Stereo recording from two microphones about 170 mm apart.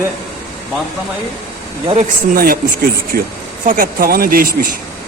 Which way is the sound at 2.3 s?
60° right (ahead or behind).